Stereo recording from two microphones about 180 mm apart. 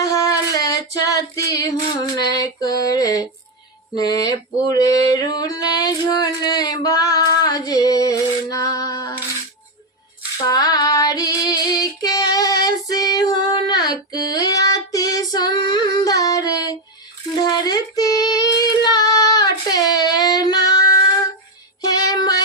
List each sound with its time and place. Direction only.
0.0 s child singing: 20° left (ahead or behind)
2.2 s female singing: 20° left (ahead or behind)
3.9 s a sound: 20° left (ahead or behind)
10.4 s female singing: 20° left (ahead or behind)
17.4 s child singing: 20° left (ahead or behind)
21.8 s music: 20° left (ahead or behind)